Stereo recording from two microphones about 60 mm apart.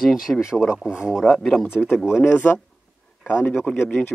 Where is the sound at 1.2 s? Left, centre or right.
Centre.